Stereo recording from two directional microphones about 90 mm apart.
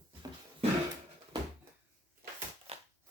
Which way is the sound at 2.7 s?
90° right.